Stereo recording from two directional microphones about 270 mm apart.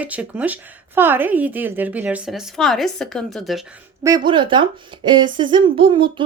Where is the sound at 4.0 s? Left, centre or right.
Centre.